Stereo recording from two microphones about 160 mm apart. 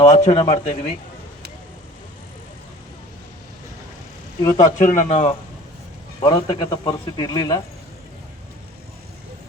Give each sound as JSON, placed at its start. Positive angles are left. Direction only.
{"t": 0.1, "sound": "speech", "side_deg": 45}
{"t": 4.4, "sound": "speech", "side_deg": 20}
{"t": 4.8, "sound": "speech", "side_deg": 50}
{"t": 6.2, "sound": "speech", "side_deg": 30}